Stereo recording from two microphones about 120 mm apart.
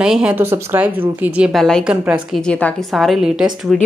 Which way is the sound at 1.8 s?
10° right (ahead or behind).